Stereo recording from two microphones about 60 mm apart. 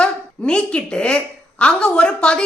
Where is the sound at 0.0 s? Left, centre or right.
Centre.